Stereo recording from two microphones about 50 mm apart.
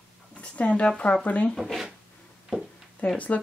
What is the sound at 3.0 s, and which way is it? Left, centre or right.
Speech, left.